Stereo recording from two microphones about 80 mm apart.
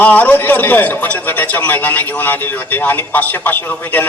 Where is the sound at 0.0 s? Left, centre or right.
Centre.